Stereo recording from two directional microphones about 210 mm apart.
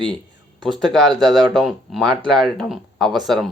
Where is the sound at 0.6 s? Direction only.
Centre (ahead or behind).